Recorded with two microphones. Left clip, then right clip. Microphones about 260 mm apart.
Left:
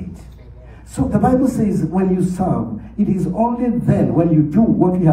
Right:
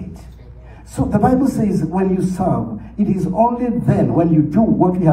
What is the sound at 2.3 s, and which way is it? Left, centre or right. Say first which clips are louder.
A man's voice: right 1 dB; right.